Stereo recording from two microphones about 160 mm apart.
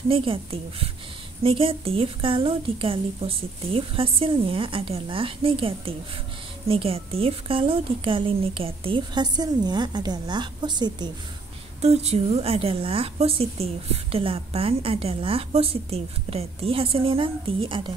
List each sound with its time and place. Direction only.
0.1 s a woman's voice: 35° right (ahead or behind)
11.8 s a woman's voice: 40° right (ahead or behind)